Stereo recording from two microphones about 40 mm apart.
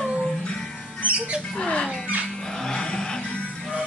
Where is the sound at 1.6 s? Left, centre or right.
Left.